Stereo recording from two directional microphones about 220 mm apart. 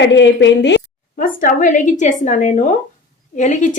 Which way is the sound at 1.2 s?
40° left (ahead or behind).